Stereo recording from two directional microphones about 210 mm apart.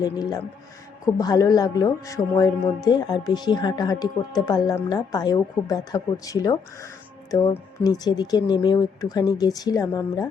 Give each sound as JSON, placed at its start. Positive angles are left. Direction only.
{"t": 0.0, "sound": "speech", "side_deg": 20}